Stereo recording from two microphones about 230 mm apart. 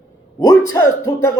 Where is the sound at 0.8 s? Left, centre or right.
Left.